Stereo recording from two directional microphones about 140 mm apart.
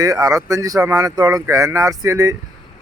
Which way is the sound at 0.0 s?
25° right (ahead or behind).